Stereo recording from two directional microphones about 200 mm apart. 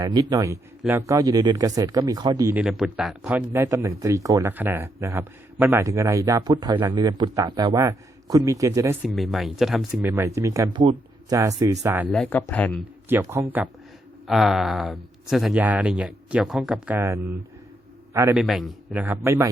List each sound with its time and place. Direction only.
0.0 s speech: 20° right (ahead or behind)
2.6 s speech: centre (ahead or behind)
9.0 s speech: centre (ahead or behind)
10.1 s speech: 15° right (ahead or behind)
12.0 s speech: 5° left (ahead or behind)
13.1 s a man's voice: 10° right (ahead or behind)
18.3 s speech: centre (ahead or behind)